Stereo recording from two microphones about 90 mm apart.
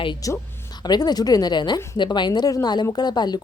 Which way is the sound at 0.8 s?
50° left (ahead or behind).